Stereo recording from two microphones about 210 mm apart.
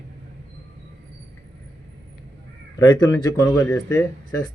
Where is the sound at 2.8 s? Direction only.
20° left (ahead or behind).